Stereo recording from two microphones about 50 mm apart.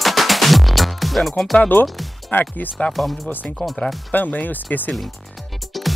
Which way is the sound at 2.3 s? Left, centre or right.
Left.